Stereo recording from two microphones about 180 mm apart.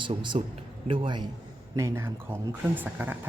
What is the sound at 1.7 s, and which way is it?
Speech, 15° right (ahead or behind).